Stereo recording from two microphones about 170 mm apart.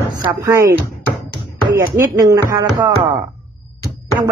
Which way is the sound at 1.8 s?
20° right (ahead or behind).